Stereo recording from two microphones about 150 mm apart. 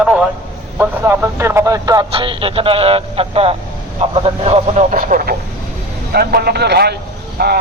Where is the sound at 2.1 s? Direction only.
35° right (ahead or behind).